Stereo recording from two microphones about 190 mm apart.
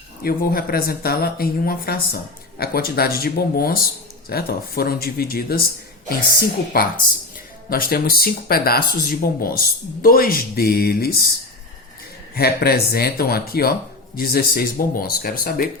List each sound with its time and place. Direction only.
0.2 s speech: 55° left (ahead or behind)
6.7 s speech: 50° left (ahead or behind)
12.4 s speech: 55° left (ahead or behind)